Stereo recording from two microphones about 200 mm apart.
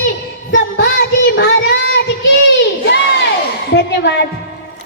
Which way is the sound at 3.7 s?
60° left (ahead or behind).